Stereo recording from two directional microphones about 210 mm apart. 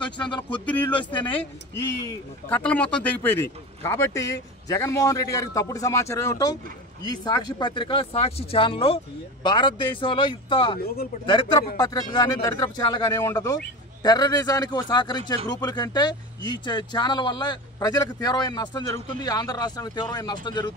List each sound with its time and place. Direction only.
0.7 s speech: 5° left (ahead or behind)
2.0 s a man's voice: 5° left (ahead or behind)